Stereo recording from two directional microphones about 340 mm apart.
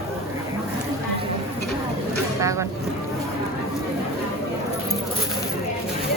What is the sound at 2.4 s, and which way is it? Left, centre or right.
Speech, centre.